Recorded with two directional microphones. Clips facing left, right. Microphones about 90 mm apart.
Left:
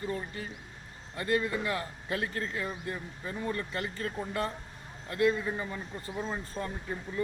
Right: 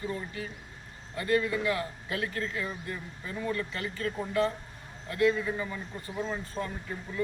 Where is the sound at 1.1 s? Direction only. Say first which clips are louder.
Right 2 dB; 35° left (ahead or behind).